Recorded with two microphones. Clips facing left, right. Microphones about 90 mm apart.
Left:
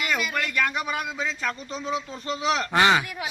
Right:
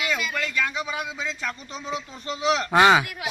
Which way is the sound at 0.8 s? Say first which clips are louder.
Left 2 dB; centre (ahead or behind).